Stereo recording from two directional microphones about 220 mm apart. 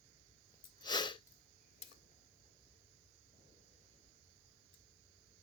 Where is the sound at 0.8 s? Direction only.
20° left (ahead or behind).